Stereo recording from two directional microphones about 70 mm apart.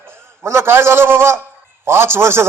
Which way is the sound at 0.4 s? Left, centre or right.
Right.